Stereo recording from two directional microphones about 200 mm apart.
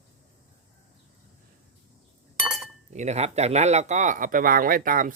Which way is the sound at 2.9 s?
35° right (ahead or behind).